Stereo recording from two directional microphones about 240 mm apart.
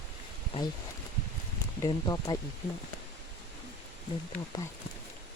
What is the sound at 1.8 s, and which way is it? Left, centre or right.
Speech, centre.